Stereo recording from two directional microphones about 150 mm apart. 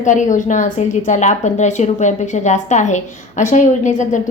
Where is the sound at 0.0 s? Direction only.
55° left (ahead or behind).